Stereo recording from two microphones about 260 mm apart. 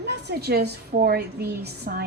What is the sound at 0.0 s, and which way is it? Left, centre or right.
A woman's voice, right.